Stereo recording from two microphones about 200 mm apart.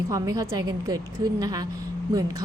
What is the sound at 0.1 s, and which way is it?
A woman's voice, 15° right (ahead or behind).